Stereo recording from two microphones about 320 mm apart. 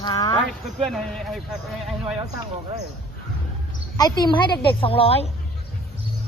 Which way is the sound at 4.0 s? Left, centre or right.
Centre.